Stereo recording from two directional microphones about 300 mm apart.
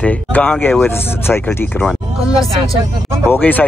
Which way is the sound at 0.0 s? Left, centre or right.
Centre.